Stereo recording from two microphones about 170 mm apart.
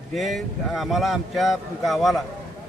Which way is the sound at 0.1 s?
Centre (ahead or behind).